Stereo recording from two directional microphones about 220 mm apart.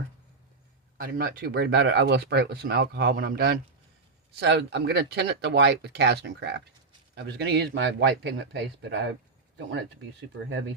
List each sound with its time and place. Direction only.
0.9 s speech: 40° right (ahead or behind)